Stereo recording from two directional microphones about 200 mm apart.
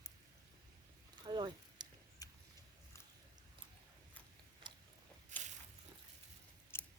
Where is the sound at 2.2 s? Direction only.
15° left (ahead or behind).